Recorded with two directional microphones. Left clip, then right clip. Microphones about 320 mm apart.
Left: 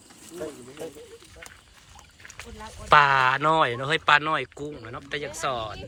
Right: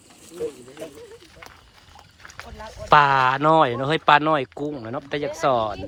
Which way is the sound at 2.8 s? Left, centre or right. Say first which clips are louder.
Right 2 dB; centre.